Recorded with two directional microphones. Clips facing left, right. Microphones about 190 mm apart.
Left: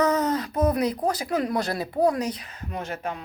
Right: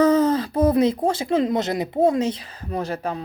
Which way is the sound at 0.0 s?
30° right (ahead or behind).